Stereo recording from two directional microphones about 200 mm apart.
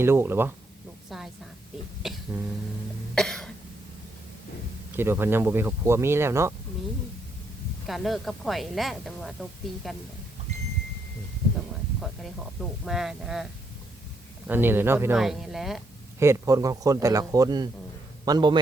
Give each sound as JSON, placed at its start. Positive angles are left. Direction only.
{"t": 0.0, "sound": "speech", "side_deg": -10}
{"t": 2.0, "sound": "a sound", "side_deg": 0}
{"t": 3.2, "sound": "cough", "side_deg": 0}
{"t": 4.9, "sound": "speech", "side_deg": -10}
{"t": 7.9, "sound": "a woman's voice", "side_deg": 0}
{"t": 11.9, "sound": "a woman's voice", "side_deg": 0}
{"t": 16.1, "sound": "a man's voice", "side_deg": -15}